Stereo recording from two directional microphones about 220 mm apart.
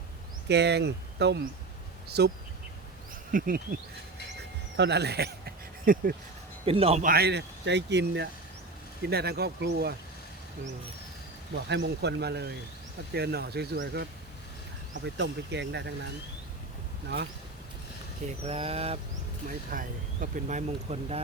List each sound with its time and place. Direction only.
0.4 s speech: 50° right (ahead or behind)
3.3 s speech: 40° right (ahead or behind)
4.8 s speech: 50° right (ahead or behind)
6.7 s speech: 25° right (ahead or behind)
7.0 s speech: 45° right (ahead or behind)
11.5 s speech: 50° right (ahead or behind)
18.4 s speech: 25° right (ahead or behind)
19.5 s speech: 40° right (ahead or behind)